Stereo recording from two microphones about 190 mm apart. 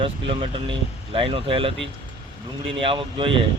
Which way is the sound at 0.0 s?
30° right (ahead or behind).